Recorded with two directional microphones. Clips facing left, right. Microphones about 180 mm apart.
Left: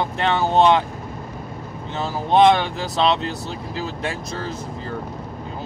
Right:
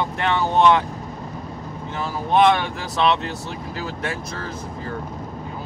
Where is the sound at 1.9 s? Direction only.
25° left (ahead or behind).